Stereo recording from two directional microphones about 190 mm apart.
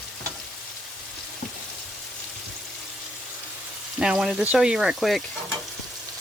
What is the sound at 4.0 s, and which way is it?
Speech, 5° right (ahead or behind).